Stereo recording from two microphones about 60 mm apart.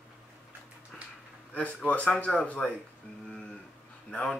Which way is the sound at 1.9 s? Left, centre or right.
Left.